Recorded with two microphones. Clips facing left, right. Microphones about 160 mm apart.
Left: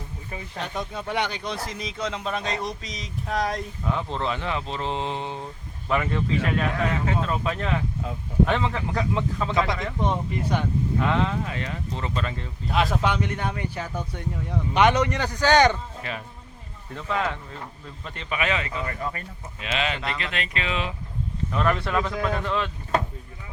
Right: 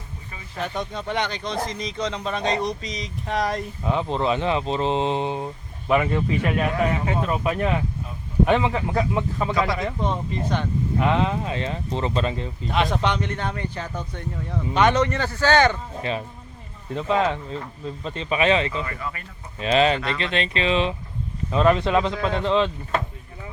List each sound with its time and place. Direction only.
0.6 s speech: centre (ahead or behind)
3.8 s speech: 20° right (ahead or behind)
10.1 s speech: 10° left (ahead or behind)
11.0 s speech: 20° right (ahead or behind)
12.6 s speech: 5° left (ahead or behind)
16.9 s speech: 20° right (ahead or behind)
18.9 s speech: 40° left (ahead or behind)
19.5 s speech: 35° right (ahead or behind)